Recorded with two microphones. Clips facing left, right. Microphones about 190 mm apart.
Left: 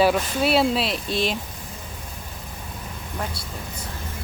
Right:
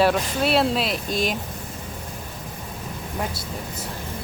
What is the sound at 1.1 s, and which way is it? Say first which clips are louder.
Speech: even; 45° right (ahead or behind).